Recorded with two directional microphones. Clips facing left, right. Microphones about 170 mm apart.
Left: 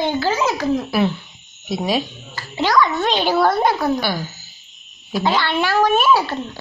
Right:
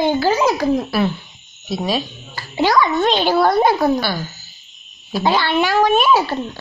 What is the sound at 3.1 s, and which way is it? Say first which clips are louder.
Speech: right 2 dB; 5° left (ahead or behind).